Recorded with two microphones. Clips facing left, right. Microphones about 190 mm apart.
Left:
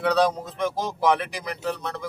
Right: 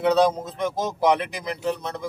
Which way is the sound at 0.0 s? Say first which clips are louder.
Right 2 dB; 20° right (ahead or behind).